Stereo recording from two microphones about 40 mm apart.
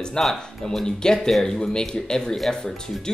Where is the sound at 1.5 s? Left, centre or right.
Centre.